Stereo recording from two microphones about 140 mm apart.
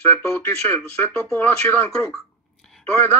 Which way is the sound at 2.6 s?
5° left (ahead or behind).